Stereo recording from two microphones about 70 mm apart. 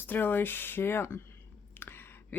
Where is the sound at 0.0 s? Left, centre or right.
Left.